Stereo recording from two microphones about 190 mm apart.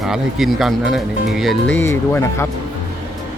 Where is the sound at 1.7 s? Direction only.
15° left (ahead or behind).